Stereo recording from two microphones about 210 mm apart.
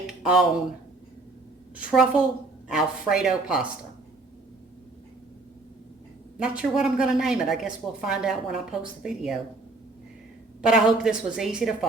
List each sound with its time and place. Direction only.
0.1 s a sound: centre (ahead or behind)
1.7 s a woman's voice: 5° right (ahead or behind)
6.4 s a woman's voice: 5° right (ahead or behind)
10.6 s a woman's voice: 5° right (ahead or behind)